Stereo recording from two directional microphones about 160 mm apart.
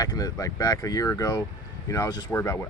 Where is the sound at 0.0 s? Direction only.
25° left (ahead or behind).